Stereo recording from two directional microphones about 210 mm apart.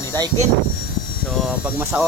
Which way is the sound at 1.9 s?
10° right (ahead or behind).